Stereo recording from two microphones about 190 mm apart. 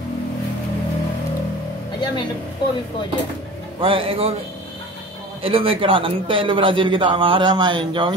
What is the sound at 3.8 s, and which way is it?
Speech, 30° right (ahead or behind).